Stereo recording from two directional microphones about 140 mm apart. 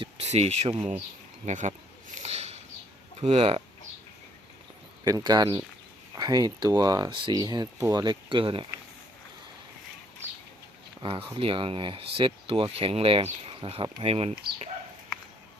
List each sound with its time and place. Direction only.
0.0 s speech: 50° right (ahead or behind)
1.5 s speech: 60° right (ahead or behind)
2.2 s a sound: 50° right (ahead or behind)
3.2 s speech: 45° right (ahead or behind)
5.0 s speech: 30° right (ahead or behind)
11.0 s speech: 40° right (ahead or behind)